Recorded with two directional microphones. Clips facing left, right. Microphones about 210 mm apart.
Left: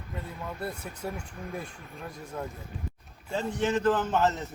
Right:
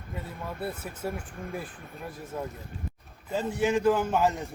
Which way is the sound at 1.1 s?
55° right (ahead or behind).